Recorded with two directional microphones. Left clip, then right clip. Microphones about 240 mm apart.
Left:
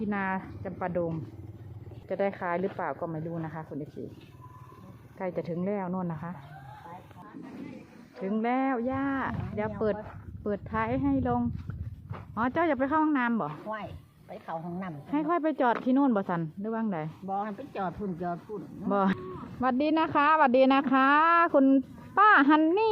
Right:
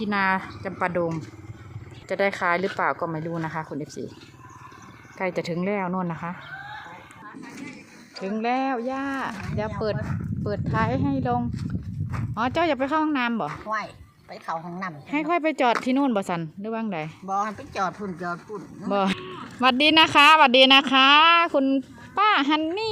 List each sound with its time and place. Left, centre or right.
0.0 s speech: centre
2.0 s speech: centre
5.1 s speech: centre
8.2 s speech: centre